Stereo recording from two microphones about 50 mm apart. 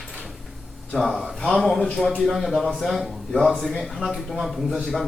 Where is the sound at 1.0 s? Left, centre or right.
Centre.